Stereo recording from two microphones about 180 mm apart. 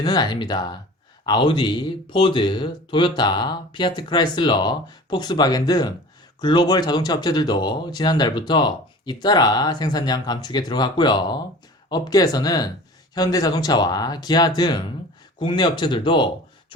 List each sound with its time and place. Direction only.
0.0 s speech: 25° left (ahead or behind)